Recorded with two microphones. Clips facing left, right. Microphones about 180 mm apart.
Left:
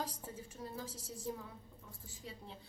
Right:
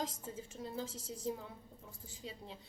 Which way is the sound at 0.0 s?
25° right (ahead or behind).